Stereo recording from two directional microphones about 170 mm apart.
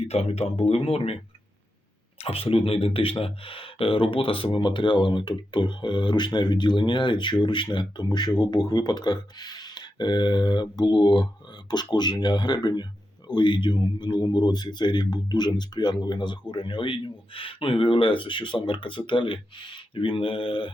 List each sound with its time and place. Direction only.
0.0 s speech: 40° left (ahead or behind)